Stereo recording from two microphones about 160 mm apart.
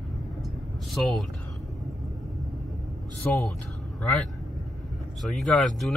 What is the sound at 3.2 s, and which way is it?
Speech, 15° left (ahead or behind).